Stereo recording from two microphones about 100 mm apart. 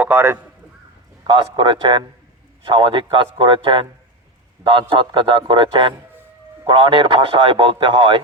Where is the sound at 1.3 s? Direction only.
50° right (ahead or behind).